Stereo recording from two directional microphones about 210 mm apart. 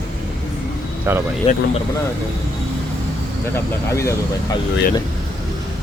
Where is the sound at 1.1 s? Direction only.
10° right (ahead or behind).